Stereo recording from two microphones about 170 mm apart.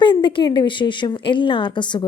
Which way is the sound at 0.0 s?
25° left (ahead or behind).